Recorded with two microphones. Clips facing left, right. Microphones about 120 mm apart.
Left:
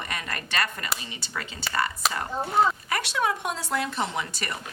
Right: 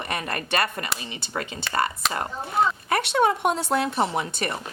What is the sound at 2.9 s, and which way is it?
A woman's voice, 60° right (ahead or behind).